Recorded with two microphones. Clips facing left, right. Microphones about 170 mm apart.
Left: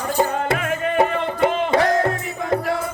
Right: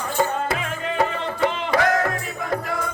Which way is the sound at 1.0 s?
25° left (ahead or behind).